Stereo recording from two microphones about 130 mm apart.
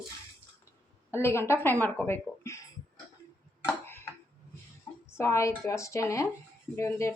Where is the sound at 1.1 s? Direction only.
20° left (ahead or behind).